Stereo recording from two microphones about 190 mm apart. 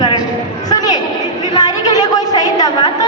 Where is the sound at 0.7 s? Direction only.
20° left (ahead or behind).